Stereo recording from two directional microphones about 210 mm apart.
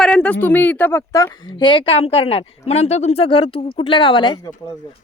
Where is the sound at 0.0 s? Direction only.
5° left (ahead or behind).